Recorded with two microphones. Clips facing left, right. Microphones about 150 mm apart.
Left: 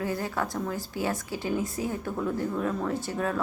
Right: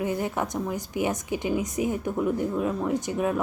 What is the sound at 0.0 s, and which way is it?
A woman's voice, 20° right (ahead or behind).